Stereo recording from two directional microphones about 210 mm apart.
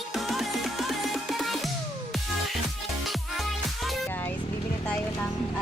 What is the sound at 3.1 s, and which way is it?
Music, centre (ahead or behind).